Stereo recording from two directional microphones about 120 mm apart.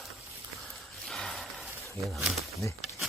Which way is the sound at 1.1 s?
Centre (ahead or behind).